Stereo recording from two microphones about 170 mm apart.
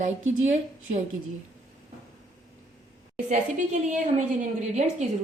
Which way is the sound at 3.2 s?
45° right (ahead or behind).